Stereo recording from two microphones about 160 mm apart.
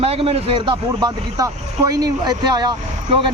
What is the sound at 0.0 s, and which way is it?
Speech, 40° right (ahead or behind).